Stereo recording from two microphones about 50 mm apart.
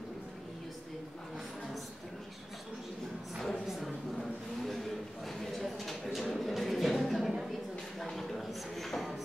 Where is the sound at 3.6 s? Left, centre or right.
Centre.